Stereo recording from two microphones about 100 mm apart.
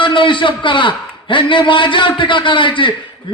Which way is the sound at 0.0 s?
55° left (ahead or behind).